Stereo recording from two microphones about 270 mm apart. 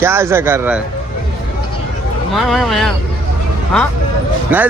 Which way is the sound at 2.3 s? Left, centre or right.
Centre.